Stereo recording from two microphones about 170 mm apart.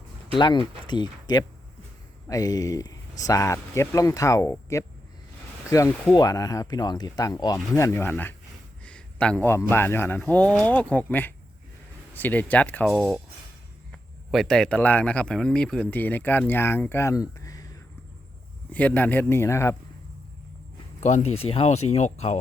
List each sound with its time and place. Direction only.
0.9 s speech: 25° left (ahead or behind)
18.7 s speech: 10° left (ahead or behind)
21.0 s speech: 40° left (ahead or behind)